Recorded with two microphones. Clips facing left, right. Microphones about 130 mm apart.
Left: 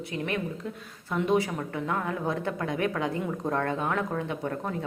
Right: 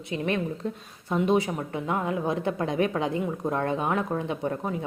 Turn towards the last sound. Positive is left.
turn(degrees=-20)  # may be behind; listen again after turning